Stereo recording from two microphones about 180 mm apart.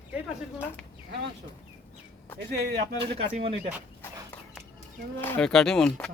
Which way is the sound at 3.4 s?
35° right (ahead or behind).